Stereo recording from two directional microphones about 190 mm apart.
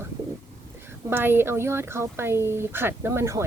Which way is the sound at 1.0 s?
10° right (ahead or behind).